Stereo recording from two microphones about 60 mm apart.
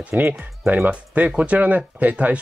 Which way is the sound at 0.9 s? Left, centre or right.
Centre.